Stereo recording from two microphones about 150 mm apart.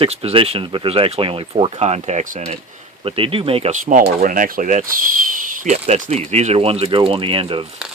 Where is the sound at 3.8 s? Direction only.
60° right (ahead or behind); by 7.6 s 35° right (ahead or behind).